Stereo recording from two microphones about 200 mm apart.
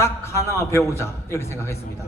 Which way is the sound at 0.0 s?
15° left (ahead or behind).